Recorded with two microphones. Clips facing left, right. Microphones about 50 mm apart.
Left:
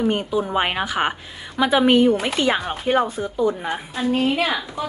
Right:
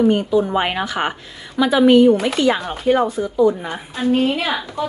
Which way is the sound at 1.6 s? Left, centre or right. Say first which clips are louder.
Right 3 dB; left.